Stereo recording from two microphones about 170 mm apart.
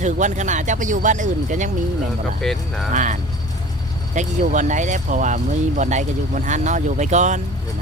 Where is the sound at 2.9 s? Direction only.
45° right (ahead or behind).